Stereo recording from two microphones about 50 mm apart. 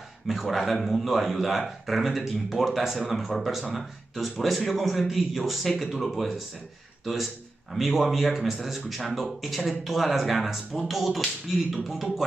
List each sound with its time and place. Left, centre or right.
0.3 s speech: centre
7.7 s speech: centre